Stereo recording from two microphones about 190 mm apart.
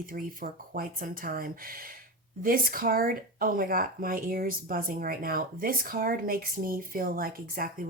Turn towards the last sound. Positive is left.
turn(degrees=-50)  # may be behind; listen again after turning